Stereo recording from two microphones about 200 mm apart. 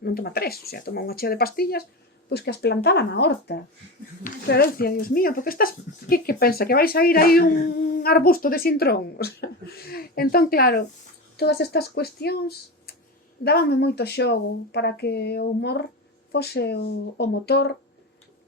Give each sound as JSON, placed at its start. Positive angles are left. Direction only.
{"t": 0.0, "sound": "a woman's voice", "side_deg": 50}